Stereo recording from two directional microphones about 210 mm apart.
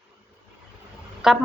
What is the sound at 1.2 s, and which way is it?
Speech, 5° right (ahead or behind).